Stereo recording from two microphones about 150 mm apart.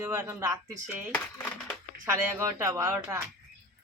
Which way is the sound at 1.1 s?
10° left (ahead or behind).